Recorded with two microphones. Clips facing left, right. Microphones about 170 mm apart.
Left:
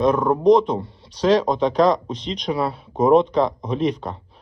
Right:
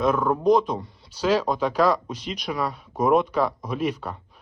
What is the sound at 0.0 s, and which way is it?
Speech, 30° left (ahead or behind).